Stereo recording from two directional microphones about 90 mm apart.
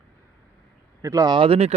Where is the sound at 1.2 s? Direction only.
80° right.